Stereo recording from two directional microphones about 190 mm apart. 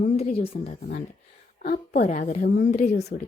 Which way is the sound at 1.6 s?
55° left (ahead or behind).